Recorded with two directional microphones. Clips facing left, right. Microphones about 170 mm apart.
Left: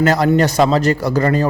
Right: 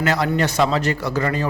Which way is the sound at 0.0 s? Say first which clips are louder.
Left 6 dB; 40° left (ahead or behind).